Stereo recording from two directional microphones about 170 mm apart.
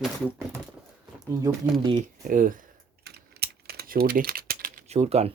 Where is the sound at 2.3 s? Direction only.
55° right (ahead or behind).